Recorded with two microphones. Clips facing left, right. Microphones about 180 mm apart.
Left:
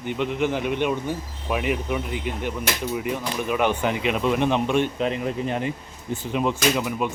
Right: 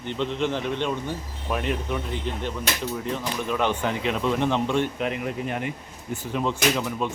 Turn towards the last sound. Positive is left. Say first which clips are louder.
# left 2 dB
turn(degrees=10)  # may be behind; listen again after turning